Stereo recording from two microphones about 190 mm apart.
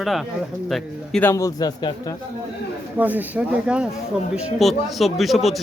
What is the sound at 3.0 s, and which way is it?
Speech, 10° right (ahead or behind).